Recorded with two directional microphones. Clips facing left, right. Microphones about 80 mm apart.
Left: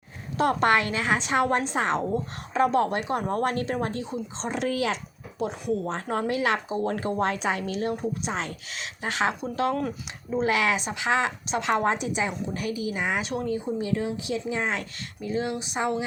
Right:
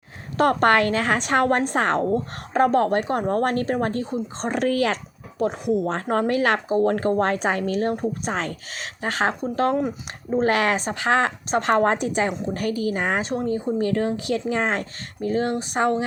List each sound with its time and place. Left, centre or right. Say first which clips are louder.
0.3 s a woman's voice: right 4 dB; right
5.6 s speech: right 5 dB; centre
5.9 s a woman's voice: right 5 dB; right
13.7 s a woman's voice: right 5 dB; right